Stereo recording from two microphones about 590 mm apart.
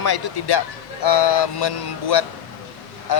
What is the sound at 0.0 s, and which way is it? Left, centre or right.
A man's voice, left.